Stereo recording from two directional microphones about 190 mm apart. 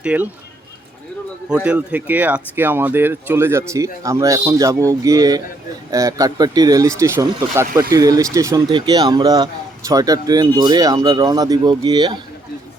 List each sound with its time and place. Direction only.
0.0 s speech: 5° right (ahead or behind)
1.5 s speech: 5° right (ahead or behind); by 12.1 s 25° right (ahead or behind)